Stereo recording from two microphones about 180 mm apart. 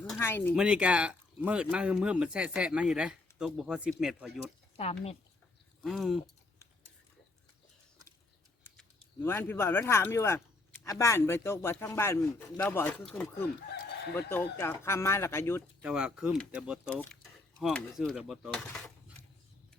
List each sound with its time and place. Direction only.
0.2 s speech: 15° left (ahead or behind)
0.5 s speech: 5° right (ahead or behind)
4.8 s speech: 35° left (ahead or behind)
5.8 s speech: centre (ahead or behind)
8.7 s speech: 10° left (ahead or behind)
15.8 s speech: 5° right (ahead or behind)